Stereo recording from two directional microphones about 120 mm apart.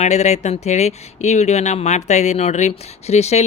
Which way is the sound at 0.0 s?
70° left (ahead or behind).